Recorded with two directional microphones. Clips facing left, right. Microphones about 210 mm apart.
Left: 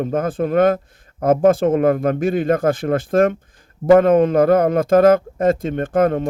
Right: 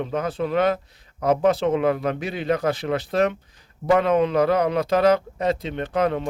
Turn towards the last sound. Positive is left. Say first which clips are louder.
# left 6 dB
turn(degrees=50)  # may be behind; listen again after turning